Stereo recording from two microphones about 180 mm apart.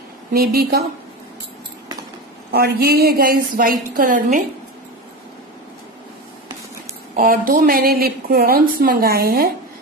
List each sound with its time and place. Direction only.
0.3 s a woman's voice: 55° right (ahead or behind)
2.5 s a woman's voice: 60° right (ahead or behind)
7.2 s a woman's voice: 50° right (ahead or behind)